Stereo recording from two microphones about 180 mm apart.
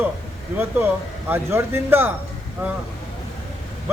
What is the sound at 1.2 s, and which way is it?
Speech, 10° right (ahead or behind).